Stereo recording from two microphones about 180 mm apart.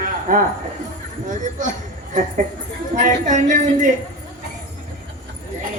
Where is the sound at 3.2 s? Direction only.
45° right (ahead or behind).